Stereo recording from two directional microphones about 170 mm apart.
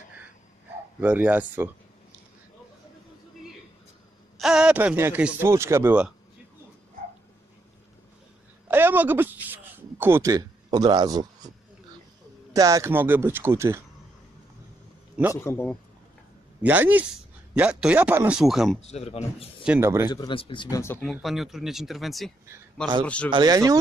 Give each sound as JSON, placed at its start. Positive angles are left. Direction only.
{"t": 1.0, "sound": "speech", "side_deg": -10}
{"t": 4.4, "sound": "speech", "side_deg": -5}
{"t": 8.6, "sound": "a sound", "side_deg": -10}
{"t": 12.5, "sound": "speech", "side_deg": -20}
{"t": 15.4, "sound": "a man's voice", "side_deg": 10}
{"t": 16.6, "sound": "speech", "side_deg": -10}
{"t": 18.8, "sound": "speech", "side_deg": 40}
{"t": 19.6, "sound": "speech", "side_deg": -5}
{"t": 20.1, "sound": "speech", "side_deg": 25}
{"t": 20.7, "sound": "a man's voice", "side_deg": 15}
{"t": 21.0, "sound": "a man's voice", "side_deg": 0}
{"t": 23.3, "sound": "speech", "side_deg": -25}